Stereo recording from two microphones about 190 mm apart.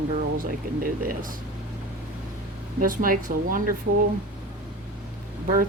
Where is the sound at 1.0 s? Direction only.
50° right (ahead or behind).